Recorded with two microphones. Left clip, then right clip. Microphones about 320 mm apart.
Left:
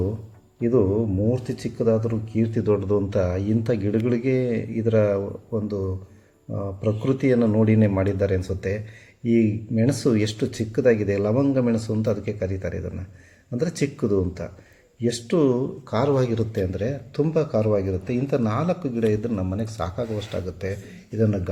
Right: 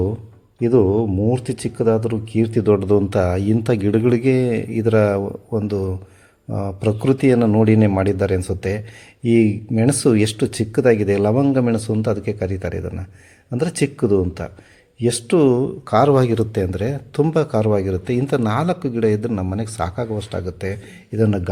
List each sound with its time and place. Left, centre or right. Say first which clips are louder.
0.6 s speech: right 5 dB; right